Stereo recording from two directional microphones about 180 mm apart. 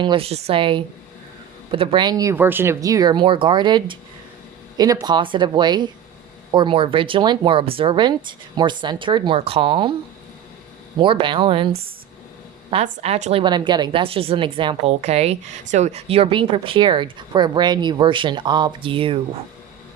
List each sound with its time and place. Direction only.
0.0 s speech: 30° right (ahead or behind)
11.0 s a woman's voice: 25° right (ahead or behind)
13.4 s speech: 25° right (ahead or behind)